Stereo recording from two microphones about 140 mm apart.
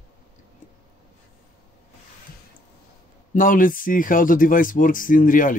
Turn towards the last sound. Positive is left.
turn(degrees=75)  # may be behind; listen again after turning